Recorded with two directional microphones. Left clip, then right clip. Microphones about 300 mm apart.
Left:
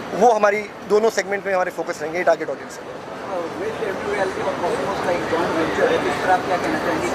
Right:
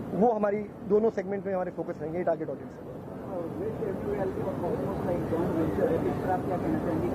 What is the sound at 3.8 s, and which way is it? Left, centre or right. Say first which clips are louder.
Speech: left 9 dB; centre.